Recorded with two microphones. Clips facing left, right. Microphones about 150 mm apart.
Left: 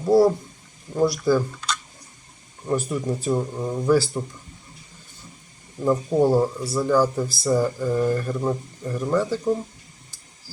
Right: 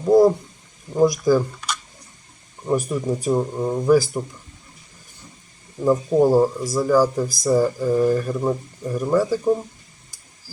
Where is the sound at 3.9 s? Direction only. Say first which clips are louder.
Right 3 dB; 15° right (ahead or behind).